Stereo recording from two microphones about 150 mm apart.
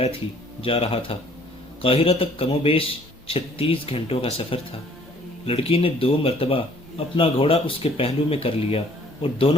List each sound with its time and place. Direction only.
0.6 s speech: 40° left (ahead or behind)